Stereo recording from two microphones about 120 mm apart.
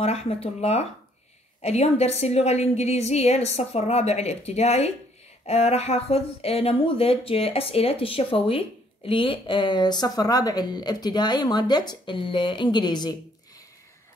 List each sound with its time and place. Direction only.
0.0 s a woman's voice: 60° left (ahead or behind); by 13.2 s 35° left (ahead or behind)